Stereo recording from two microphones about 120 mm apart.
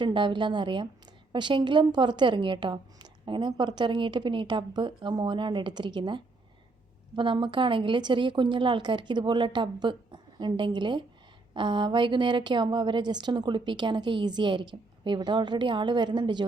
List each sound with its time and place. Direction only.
0.0 s a woman's voice: 40° right (ahead or behind)